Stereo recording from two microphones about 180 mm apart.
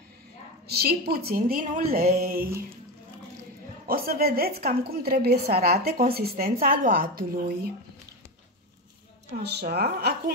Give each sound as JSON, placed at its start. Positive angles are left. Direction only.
{"t": 0.7, "sound": "a woman's voice", "side_deg": -60}
{"t": 3.8, "sound": "a woman's voice", "side_deg": -55}
{"t": 9.3, "sound": "a woman's voice", "side_deg": -65}